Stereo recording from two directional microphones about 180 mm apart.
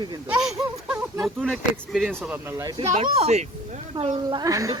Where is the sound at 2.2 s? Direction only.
10° right (ahead or behind).